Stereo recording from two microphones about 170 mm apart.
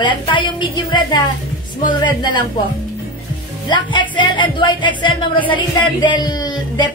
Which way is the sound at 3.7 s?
30° left (ahead or behind).